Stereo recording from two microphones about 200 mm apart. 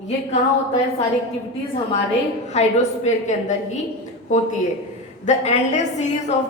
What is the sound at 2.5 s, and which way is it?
A woman's voice, 35° left (ahead or behind).